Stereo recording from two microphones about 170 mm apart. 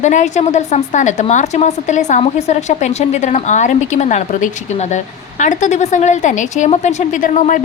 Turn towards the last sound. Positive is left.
turn(degrees=50)  # may be behind; listen again after turning